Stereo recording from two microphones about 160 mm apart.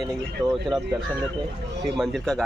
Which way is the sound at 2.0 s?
Centre (ahead or behind).